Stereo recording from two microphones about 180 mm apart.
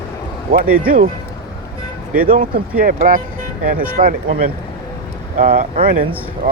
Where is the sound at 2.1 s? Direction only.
50° right (ahead or behind).